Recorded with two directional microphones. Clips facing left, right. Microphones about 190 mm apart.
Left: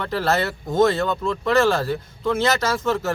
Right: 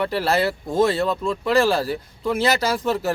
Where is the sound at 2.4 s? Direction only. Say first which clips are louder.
Right 2 dB; 35° right (ahead or behind).